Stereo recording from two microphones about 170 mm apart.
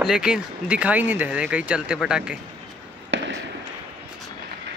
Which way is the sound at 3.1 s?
90° right.